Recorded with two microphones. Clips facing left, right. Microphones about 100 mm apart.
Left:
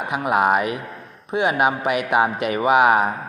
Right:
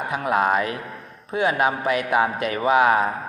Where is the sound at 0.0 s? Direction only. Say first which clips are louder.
Left 2 dB; 15° left (ahead or behind).